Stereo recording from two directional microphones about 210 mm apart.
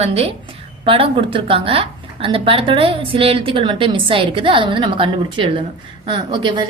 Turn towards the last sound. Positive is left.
turn(degrees=-20)  # may be behind; listen again after turning